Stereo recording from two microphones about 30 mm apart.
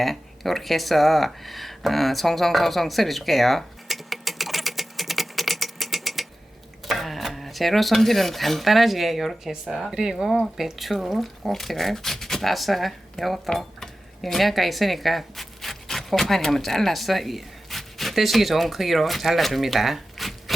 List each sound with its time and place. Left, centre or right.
0.0 s a sound: centre
6.8 s speech: centre
10.2 s speech: centre
11.2 s speech: centre
13.7 s zipper: centre
16.3 s speech: centre